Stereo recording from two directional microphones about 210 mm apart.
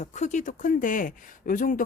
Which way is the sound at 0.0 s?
35° left (ahead or behind).